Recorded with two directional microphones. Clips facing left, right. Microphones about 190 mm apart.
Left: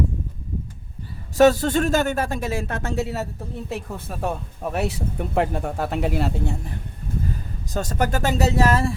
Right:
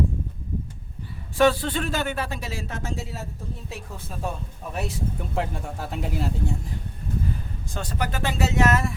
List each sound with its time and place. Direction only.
1.4 s speech: 45° left (ahead or behind); by 6.7 s 65° left (ahead or behind)
7.7 s speech: 45° left (ahead or behind)